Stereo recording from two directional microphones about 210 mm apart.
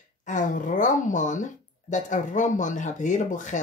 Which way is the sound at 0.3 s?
40° left (ahead or behind).